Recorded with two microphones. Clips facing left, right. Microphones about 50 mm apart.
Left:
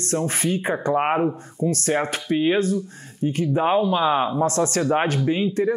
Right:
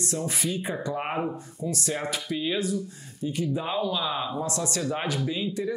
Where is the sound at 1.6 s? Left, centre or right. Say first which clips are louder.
Left 8 dB; left.